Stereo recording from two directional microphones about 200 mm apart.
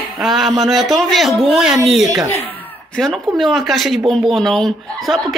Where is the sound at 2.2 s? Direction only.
10° left (ahead or behind).